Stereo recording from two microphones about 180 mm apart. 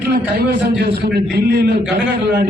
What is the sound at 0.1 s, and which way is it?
A man's voice, 60° right (ahead or behind).